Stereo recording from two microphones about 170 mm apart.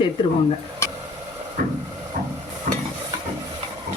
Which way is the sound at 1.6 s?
55° right (ahead or behind).